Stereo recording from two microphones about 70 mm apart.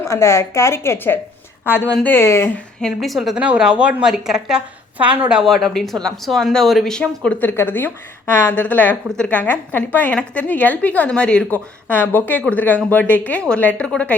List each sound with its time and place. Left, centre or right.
0.0 s a woman's voice: left
2.8 s speech: centre
3.3 s a woman's voice: centre
4.9 s speech: right
5.4 s speech: centre
7.4 s a woman's voice: left; by 11.4 s centre
11.5 s a woman's voice: left